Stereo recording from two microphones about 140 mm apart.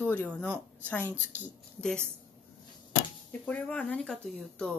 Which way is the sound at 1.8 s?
5° left (ahead or behind).